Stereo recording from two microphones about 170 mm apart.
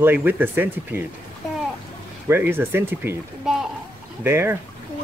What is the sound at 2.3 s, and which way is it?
Speech, 10° right (ahead or behind).